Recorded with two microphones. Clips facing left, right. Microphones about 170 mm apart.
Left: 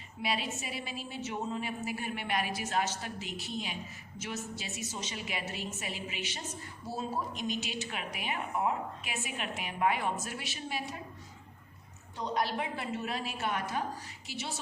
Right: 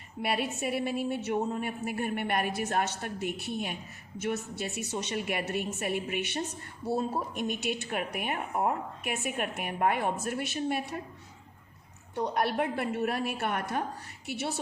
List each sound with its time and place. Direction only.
0.2 s a woman's voice: 60° right (ahead or behind)
12.1 s a woman's voice: 60° right (ahead or behind)